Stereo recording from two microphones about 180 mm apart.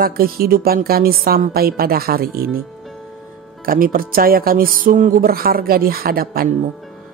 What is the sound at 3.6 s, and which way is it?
Speech, 50° right (ahead or behind).